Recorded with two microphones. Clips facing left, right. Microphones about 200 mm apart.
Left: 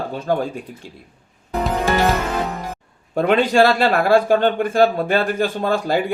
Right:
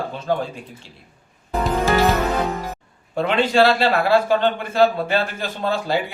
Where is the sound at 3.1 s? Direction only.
50° left (ahead or behind).